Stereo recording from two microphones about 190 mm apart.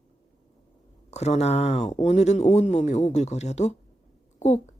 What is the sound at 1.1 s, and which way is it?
Speech, 35° left (ahead or behind).